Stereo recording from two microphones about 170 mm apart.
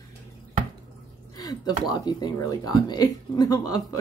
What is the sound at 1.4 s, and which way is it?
Speech, 25° left (ahead or behind).